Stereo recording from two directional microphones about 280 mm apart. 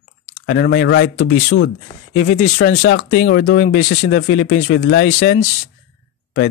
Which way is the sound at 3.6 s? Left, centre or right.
Left.